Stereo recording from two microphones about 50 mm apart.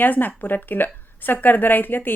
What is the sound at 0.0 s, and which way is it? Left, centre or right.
A woman's voice, left.